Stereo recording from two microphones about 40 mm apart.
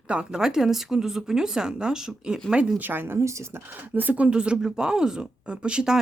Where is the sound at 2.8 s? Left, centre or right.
Right.